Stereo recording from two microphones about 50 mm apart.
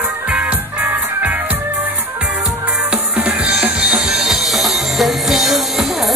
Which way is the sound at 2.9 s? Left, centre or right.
Right.